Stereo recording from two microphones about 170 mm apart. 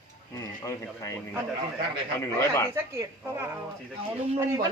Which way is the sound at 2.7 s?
15° right (ahead or behind).